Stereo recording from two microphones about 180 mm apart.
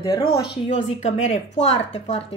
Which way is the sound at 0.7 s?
35° left (ahead or behind).